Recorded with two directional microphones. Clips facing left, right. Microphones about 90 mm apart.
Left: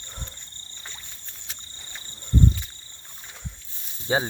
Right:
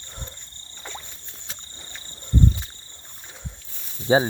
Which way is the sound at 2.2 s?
25° right (ahead or behind).